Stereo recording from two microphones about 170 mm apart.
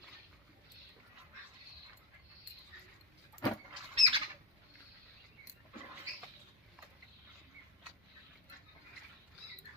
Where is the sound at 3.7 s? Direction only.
35° right (ahead or behind).